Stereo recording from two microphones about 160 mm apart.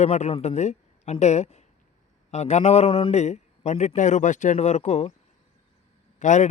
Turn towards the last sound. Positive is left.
turn(degrees=50)  # may be behind; listen again after turning